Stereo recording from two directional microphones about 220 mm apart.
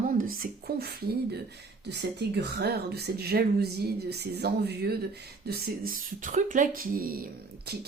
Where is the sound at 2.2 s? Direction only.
50° right (ahead or behind).